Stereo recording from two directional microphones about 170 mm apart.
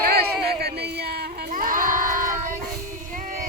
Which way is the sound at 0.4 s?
70° right (ahead or behind).